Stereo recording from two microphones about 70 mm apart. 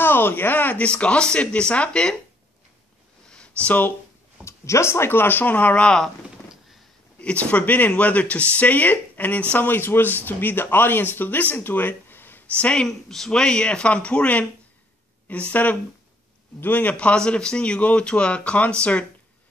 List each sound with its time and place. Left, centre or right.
0.0 s a man's voice: left; by 2.1 s centre
3.3 s a sound: centre
4.5 s speech: left; by 6.1 s centre
7.2 s speech: centre
12.5 s a man's voice: centre
12.8 s a man's voice: centre